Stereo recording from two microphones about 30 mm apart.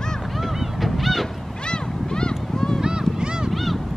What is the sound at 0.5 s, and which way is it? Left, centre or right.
Goose, centre.